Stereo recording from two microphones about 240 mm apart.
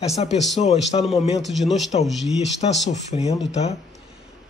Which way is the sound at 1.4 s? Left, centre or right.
Centre.